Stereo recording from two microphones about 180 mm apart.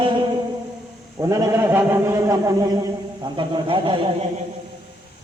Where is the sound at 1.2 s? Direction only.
15° right (ahead or behind).